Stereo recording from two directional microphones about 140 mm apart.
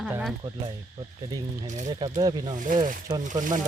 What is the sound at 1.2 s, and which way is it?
Insect, 25° right (ahead or behind).